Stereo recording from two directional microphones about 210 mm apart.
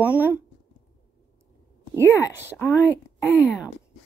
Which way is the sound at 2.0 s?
10° left (ahead or behind).